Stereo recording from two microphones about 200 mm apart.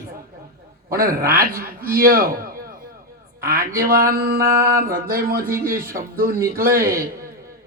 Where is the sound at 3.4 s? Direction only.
45° right (ahead or behind).